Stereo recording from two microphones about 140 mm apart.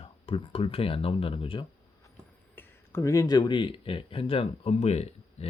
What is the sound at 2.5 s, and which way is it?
Speech, 20° left (ahead or behind).